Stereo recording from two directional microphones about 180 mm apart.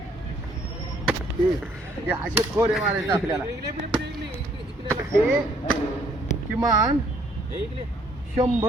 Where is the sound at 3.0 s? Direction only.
20° right (ahead or behind).